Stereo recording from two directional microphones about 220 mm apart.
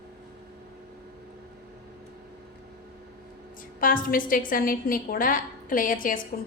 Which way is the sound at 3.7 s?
40° left (ahead or behind).